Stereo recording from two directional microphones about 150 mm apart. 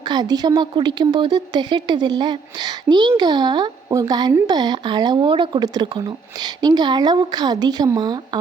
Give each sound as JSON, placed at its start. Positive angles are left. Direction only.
{"t": 0.1, "sound": "a woman's voice", "side_deg": -25}